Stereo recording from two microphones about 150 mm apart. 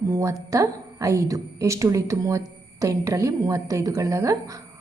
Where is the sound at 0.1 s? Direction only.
20° right (ahead or behind).